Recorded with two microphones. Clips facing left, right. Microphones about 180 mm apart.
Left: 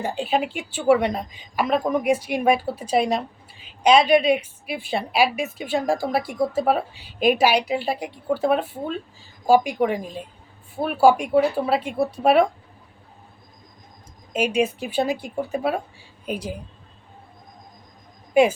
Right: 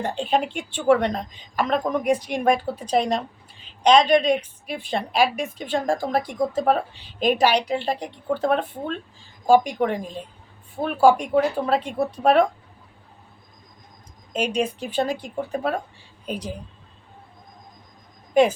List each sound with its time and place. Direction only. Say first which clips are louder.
0.0 s speech: even; 5° left (ahead or behind)
14.3 s speech: left 2 dB; 10° left (ahead or behind)